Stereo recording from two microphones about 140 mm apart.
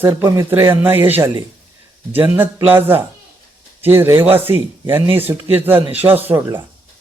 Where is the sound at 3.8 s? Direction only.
15° right (ahead or behind).